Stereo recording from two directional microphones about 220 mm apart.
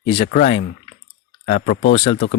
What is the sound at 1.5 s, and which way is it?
Speech, 45° left (ahead or behind).